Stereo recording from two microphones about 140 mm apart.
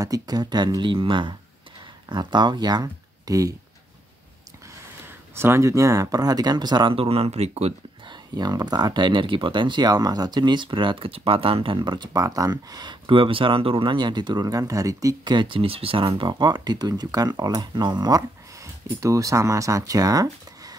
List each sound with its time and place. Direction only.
0.0 s speech: 25° right (ahead or behind)
5.3 s speech: 20° right (ahead or behind); by 7.7 s 50° right (ahead or behind)
8.1 s speech: 30° right (ahead or behind)